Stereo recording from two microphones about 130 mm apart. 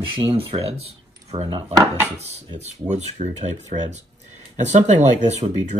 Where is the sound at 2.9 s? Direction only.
60° right (ahead or behind).